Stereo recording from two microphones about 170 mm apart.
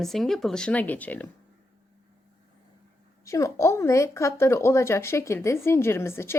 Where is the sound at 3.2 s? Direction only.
20° left (ahead or behind).